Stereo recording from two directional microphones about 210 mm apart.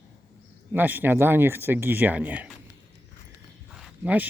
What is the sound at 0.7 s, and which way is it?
Speech, 10° right (ahead or behind).